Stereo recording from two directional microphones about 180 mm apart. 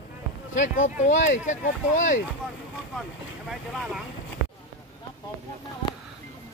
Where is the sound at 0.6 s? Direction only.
45° left (ahead or behind).